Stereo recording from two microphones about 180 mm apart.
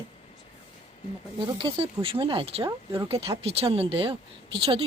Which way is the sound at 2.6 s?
15° right (ahead or behind).